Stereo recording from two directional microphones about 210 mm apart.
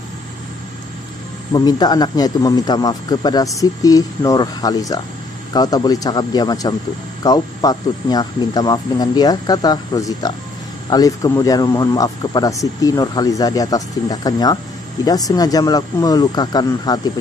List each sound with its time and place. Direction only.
1.5 s speech: 20° left (ahead or behind)